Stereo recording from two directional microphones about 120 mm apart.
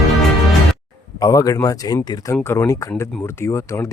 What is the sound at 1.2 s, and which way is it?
Speech, 30° left (ahead or behind).